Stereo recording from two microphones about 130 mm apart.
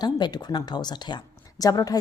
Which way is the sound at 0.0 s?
35° left (ahead or behind).